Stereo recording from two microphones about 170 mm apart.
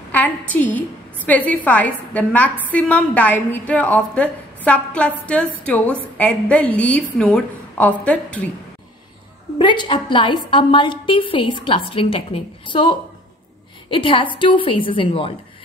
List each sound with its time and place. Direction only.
0.1 s a woman's voice: 10° left (ahead or behind)
9.6 s a woman's voice: 30° left (ahead or behind)